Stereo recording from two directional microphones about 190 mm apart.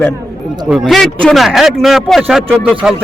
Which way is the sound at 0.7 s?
Centre (ahead or behind).